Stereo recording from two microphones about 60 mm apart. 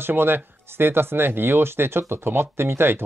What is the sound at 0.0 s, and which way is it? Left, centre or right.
Speech, right.